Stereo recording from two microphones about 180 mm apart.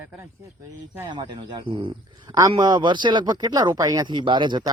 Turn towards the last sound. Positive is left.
turn(degrees=-25)  # may be behind; listen again after turning